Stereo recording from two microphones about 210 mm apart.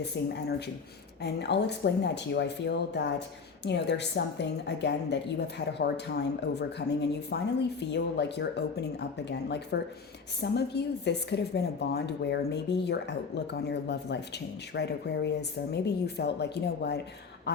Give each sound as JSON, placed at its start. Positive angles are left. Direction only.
{"t": 0.1, "sound": "a woman's voice", "side_deg": 55}